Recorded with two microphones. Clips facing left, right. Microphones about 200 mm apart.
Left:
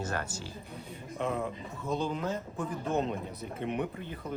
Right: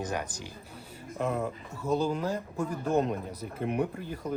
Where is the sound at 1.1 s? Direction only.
Centre (ahead or behind).